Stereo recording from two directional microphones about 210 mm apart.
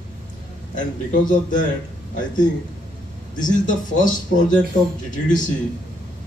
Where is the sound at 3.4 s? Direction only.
40° left (ahead or behind).